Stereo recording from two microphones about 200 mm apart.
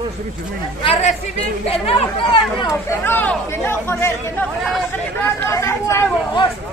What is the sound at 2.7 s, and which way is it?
Speech, 10° left (ahead or behind).